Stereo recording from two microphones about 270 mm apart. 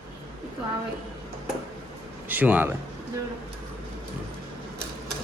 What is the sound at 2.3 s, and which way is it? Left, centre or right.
Speech, centre.